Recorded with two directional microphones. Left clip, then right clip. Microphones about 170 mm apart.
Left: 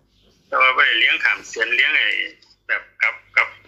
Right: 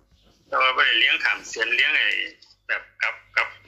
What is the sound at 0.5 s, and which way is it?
A man's voice, 10° left (ahead or behind).